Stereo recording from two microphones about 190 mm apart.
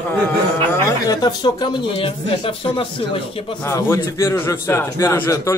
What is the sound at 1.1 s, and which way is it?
Speech, 20° left (ahead or behind).